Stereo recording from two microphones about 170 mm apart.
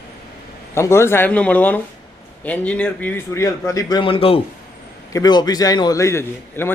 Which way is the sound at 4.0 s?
35° left (ahead or behind).